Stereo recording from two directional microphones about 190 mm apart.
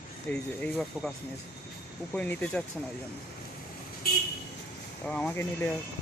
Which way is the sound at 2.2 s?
5° left (ahead or behind).